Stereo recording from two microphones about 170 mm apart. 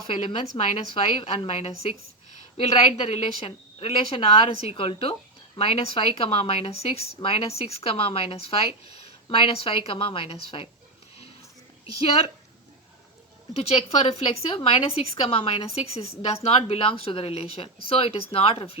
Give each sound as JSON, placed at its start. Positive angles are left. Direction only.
{"t": 0.1, "sound": "speech", "side_deg": 30}
{"t": 13.6, "sound": "speech", "side_deg": 35}